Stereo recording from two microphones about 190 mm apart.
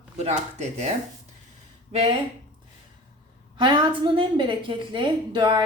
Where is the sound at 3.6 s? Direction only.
25° right (ahead or behind).